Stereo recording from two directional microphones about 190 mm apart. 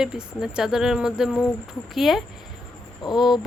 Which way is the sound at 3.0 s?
20° left (ahead or behind).